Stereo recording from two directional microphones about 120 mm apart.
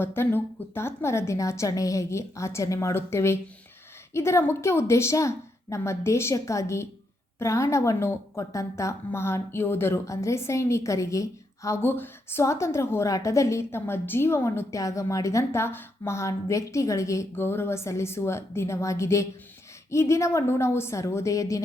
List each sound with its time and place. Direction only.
0.0 s a woman's voice: 20° left (ahead or behind)